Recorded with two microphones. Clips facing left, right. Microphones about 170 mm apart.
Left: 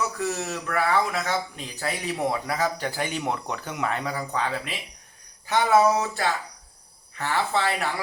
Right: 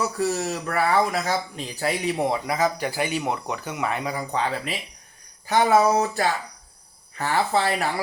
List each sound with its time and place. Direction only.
0.2 s speech: 35° right (ahead or behind)